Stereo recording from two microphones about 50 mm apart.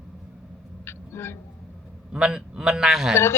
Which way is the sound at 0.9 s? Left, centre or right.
Left.